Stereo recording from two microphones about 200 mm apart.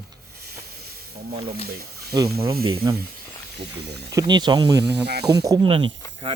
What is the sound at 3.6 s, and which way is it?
Speech, 55° right (ahead or behind).